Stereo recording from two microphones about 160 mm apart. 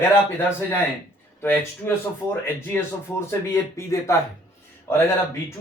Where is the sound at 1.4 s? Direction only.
15° left (ahead or behind).